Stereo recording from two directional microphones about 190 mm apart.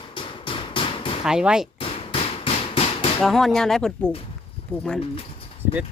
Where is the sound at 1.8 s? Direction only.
30° left (ahead or behind).